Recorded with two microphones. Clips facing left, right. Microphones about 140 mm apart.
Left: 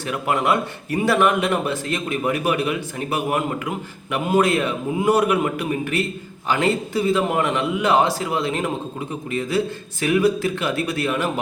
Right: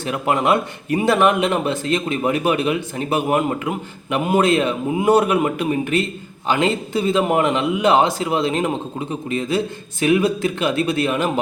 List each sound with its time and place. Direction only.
0.0 s speech: 20° right (ahead or behind)